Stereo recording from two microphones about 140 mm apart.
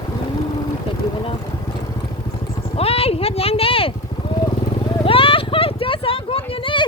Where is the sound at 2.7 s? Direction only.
45° left (ahead or behind).